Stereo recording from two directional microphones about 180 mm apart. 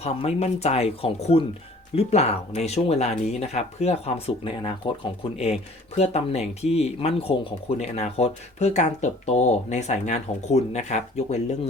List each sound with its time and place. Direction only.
0.0 s speech: 35° left (ahead or behind)
6.0 s speech: 35° left (ahead or behind)